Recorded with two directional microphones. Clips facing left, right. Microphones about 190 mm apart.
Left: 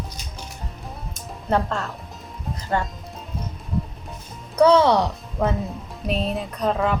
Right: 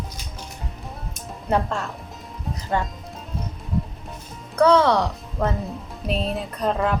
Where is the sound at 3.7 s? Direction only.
Centre (ahead or behind).